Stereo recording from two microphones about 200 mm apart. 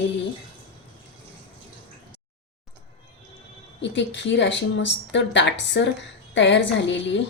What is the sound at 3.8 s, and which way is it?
A woman's voice, 65° left (ahead or behind).